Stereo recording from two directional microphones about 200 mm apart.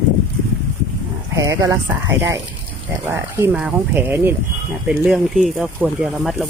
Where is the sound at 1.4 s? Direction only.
15° right (ahead or behind).